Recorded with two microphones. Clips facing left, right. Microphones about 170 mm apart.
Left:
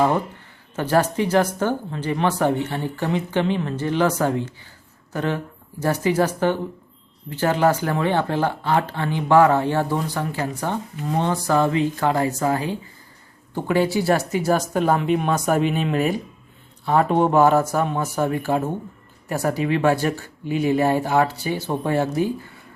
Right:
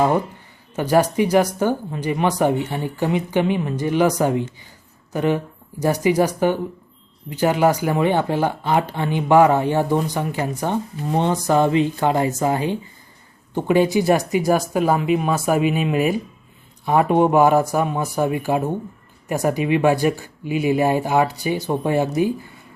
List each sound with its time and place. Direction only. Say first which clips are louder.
0.8 s speech: right 3 dB; 15° right (ahead or behind)